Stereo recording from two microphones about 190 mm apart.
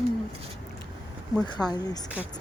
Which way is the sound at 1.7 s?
20° left (ahead or behind).